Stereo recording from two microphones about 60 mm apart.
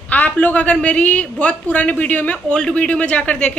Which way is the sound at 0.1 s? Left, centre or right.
Left.